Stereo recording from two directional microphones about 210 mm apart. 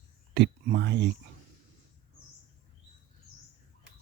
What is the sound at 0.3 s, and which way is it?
Speech, 55° right (ahead or behind).